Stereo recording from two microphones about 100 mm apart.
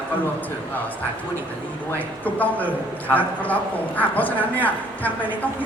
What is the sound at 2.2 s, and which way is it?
A woman's voice, 15° left (ahead or behind).